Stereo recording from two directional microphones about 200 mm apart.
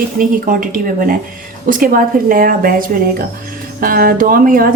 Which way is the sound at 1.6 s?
45° right (ahead or behind).